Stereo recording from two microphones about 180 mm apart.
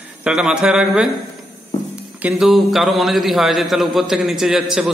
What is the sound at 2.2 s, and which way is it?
A man's voice, centre (ahead or behind).